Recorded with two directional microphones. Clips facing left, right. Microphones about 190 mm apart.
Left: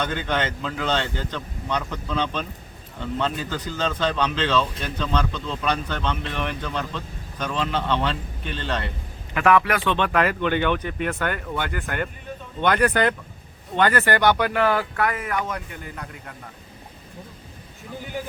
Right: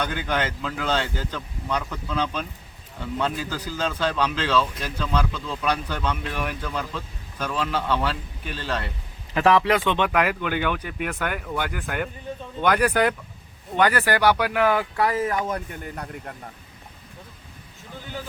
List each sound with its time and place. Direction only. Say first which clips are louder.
0.0 s speech: left 1 dB; 10° right (ahead or behind)
9.3 s speech: right 1 dB; 30° right (ahead or behind); by 14.8 s 15° right (ahead or behind)
14.9 s speech: right 2 dB; 30° right (ahead or behind)
15.7 s a man's voice: right 2 dB; 45° right (ahead or behind)